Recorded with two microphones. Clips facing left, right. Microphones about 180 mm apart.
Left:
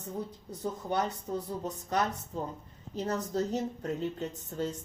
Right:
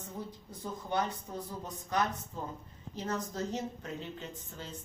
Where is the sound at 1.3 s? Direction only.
30° left (ahead or behind).